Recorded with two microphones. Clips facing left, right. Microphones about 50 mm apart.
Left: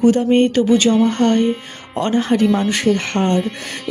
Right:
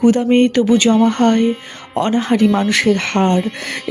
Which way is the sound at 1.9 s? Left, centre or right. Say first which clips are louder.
Right 1 dB; right.